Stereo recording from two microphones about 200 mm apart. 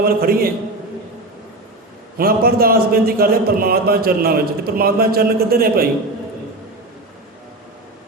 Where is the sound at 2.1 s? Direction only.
50° right (ahead or behind).